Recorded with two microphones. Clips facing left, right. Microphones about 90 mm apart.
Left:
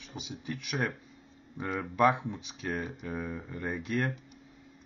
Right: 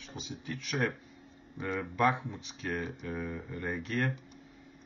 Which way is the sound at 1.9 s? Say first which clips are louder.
Left 4 dB; 15° left (ahead or behind).